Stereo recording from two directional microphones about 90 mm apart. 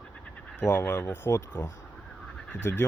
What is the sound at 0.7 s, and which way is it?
Speech, 20° left (ahead or behind).